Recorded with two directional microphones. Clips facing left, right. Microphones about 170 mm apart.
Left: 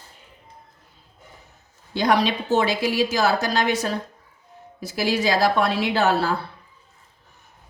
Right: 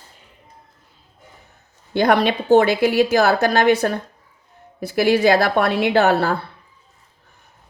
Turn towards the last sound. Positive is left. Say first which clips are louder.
# right 4 dB
turn(degrees=-60)  # may be behind; listen again after turning